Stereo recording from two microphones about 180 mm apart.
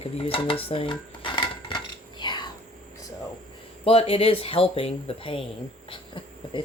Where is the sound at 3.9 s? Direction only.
30° left (ahead or behind).